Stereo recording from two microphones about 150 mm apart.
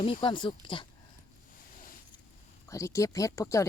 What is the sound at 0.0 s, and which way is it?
Speech, 30° left (ahead or behind).